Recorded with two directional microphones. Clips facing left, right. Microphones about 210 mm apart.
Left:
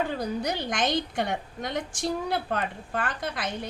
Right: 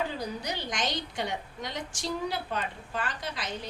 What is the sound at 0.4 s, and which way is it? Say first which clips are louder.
A woman's voice: left 5 dB; 55° left (ahead or behind).